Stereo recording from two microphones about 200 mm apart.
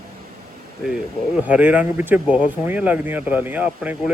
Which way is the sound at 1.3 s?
5° right (ahead or behind).